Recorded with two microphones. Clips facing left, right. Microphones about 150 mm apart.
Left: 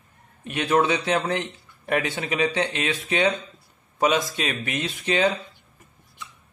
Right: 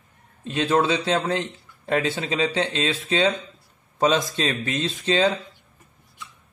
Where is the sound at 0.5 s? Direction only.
15° left (ahead or behind).